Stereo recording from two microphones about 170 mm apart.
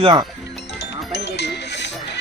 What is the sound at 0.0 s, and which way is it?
Speech, 30° right (ahead or behind).